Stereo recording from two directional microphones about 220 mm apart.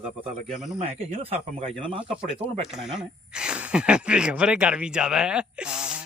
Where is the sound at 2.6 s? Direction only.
Centre (ahead or behind).